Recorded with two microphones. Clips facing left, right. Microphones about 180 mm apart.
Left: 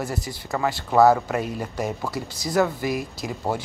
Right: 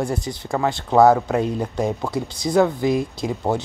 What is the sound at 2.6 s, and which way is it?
Speech, 25° right (ahead or behind).